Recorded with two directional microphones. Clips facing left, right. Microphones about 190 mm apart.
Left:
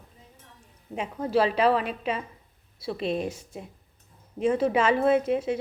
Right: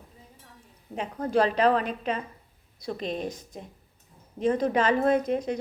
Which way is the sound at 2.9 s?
40° right (ahead or behind).